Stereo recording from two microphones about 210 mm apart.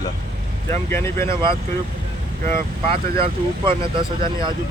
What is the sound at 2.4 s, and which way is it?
Speech, 25° right (ahead or behind).